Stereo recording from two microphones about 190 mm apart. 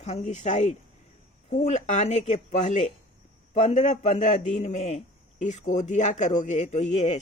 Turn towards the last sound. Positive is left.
turn(degrees=35)  # may be behind; listen again after turning